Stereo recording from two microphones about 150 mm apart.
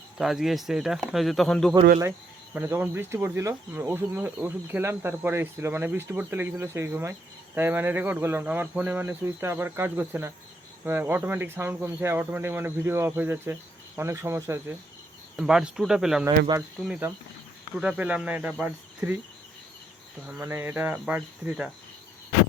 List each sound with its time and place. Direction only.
0.2 s speech: centre (ahead or behind)
2.5 s speech: 15° right (ahead or behind)
15.4 s speech: 5° right (ahead or behind)
16.2 s speech: 20° right (ahead or behind)
17.7 s speech: 10° right (ahead or behind)
20.2 s speech: 15° right (ahead or behind)